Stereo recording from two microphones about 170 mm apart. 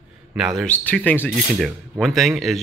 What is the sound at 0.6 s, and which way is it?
Speech, 10° left (ahead or behind).